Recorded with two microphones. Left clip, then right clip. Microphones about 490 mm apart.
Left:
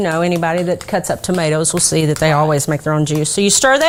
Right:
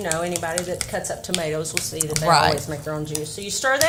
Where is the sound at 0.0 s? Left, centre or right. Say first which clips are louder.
Left 9 dB; left.